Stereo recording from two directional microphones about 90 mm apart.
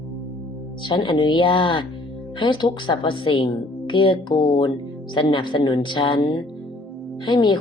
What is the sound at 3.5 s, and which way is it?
Speech, 65° left (ahead or behind).